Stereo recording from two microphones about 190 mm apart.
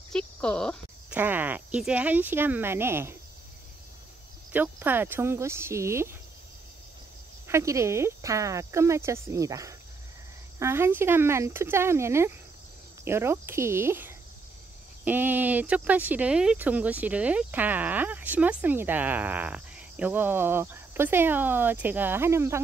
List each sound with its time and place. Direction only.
0.1 s a sound: 5° left (ahead or behind)
1.1 s speech: 10° right (ahead or behind)
4.5 s speech: 10° right (ahead or behind)
7.4 s speech: 15° right (ahead or behind)